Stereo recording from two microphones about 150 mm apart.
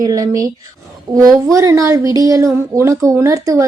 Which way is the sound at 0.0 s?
25° right (ahead or behind).